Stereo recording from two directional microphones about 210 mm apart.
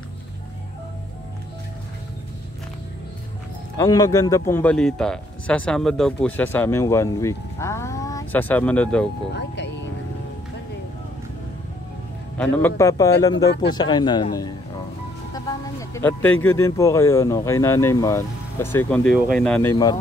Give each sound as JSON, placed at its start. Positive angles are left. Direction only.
{"t": 3.7, "sound": "speech", "side_deg": 15}
{"t": 9.3, "sound": "speech", "side_deg": 55}
{"t": 12.4, "sound": "speech", "side_deg": 10}
{"t": 15.3, "sound": "a sound", "side_deg": 15}
{"t": 16.4, "sound": "speech", "side_deg": 15}